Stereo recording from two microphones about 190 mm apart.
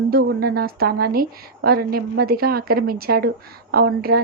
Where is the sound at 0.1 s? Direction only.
55° right (ahead or behind).